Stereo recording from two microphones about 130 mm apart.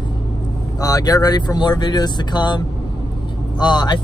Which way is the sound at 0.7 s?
30° left (ahead or behind).